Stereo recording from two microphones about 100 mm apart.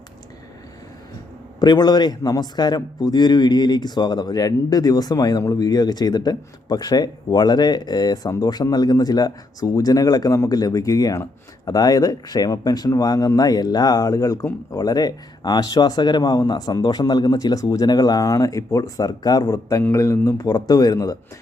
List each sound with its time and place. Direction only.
1.5 s a man's voice: 45° left (ahead or behind)